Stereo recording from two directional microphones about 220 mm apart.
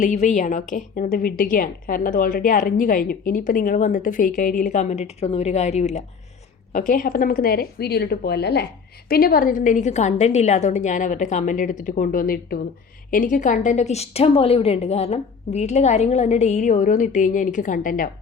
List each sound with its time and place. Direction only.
0.0 s a woman's voice: 35° left (ahead or behind)